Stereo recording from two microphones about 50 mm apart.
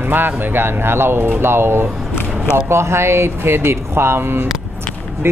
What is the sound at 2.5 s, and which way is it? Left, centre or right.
Speech, right.